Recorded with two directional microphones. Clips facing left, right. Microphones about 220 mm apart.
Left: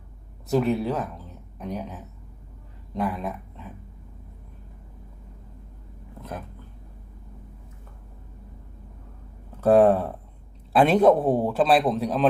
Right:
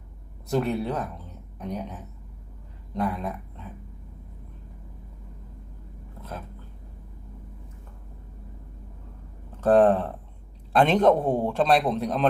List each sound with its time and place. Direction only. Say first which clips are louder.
0.4 s speech: left 3 dB; centre (ahead or behind)
9.6 s a man's voice: left 1 dB; 10° left (ahead or behind)